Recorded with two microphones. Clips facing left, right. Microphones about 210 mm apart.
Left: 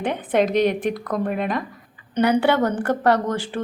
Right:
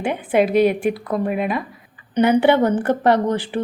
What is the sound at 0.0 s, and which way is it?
Speech, 10° right (ahead or behind).